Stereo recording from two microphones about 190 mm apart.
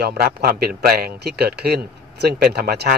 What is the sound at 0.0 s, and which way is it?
A man's voice, 55° right (ahead or behind).